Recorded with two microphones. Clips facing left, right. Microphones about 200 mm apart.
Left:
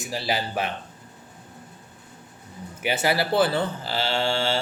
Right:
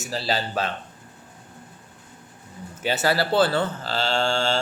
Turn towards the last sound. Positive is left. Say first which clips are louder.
# right 1 dB
turn(degrees=5)  # may be behind; listen again after turning